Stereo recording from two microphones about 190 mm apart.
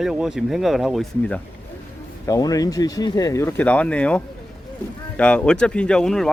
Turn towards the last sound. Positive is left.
turn(degrees=0)  # may be behind; listen again after turning